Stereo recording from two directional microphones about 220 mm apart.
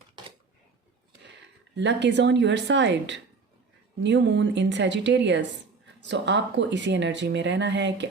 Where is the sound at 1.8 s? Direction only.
55° right (ahead or behind).